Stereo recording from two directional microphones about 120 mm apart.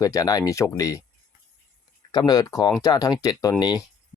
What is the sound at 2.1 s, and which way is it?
Speech, 35° left (ahead or behind).